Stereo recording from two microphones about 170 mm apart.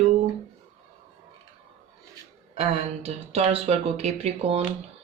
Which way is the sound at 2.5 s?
35° right (ahead or behind).